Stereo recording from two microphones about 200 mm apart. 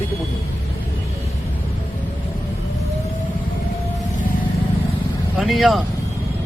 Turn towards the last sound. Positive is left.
turn(degrees=0)  # may be behind; listen again after turning